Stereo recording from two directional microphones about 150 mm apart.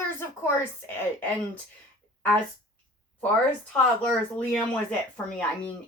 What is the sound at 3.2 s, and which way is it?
Speech, 10° left (ahead or behind).